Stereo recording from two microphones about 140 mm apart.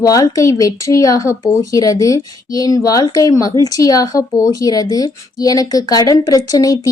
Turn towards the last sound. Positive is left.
turn(degrees=25)  # may be behind; listen again after turning